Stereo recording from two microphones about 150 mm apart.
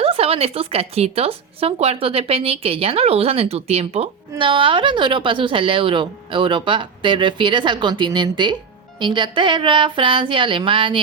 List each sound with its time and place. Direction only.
0.0 s speech: 40° right (ahead or behind)
4.4 s speech: 30° right (ahead or behind)